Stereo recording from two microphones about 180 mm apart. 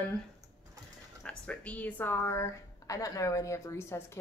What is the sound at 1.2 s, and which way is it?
A woman's voice, 5° left (ahead or behind).